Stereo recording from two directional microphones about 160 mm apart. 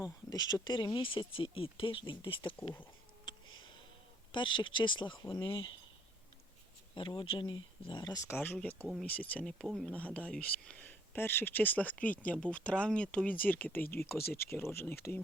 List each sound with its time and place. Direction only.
0.0 s speech: 25° left (ahead or behind)
4.3 s speech: 30° left (ahead or behind)
6.9 s speech: 30° left (ahead or behind); by 14.2 s 15° left (ahead or behind)
14.3 s speech: 75° left (ahead or behind)
14.5 s speech: 15° left (ahead or behind)